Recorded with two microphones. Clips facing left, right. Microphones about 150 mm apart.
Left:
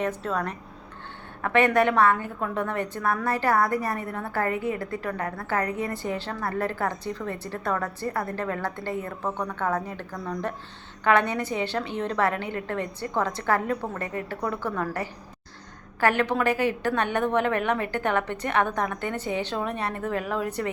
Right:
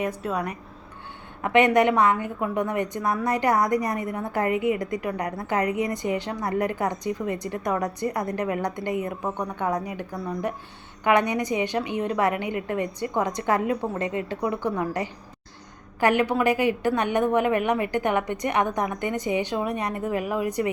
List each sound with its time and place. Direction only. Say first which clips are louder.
0.0 s a woman's voice: even; 10° right (ahead or behind)